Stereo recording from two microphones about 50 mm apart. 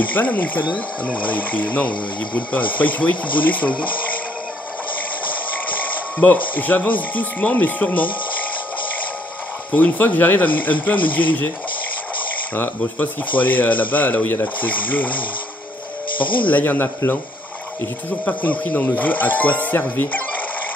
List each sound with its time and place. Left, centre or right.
0.1 s speech: left
6.1 s speech: left
9.7 s speech: left
12.5 s speech: left
13.4 s speech: left
16.4 s speech: left
18.2 s speech: left